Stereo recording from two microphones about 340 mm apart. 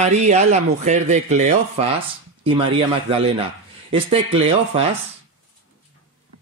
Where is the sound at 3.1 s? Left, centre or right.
Centre.